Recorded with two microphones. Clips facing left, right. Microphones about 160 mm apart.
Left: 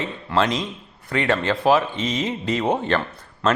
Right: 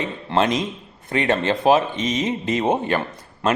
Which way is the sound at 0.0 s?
20° right (ahead or behind).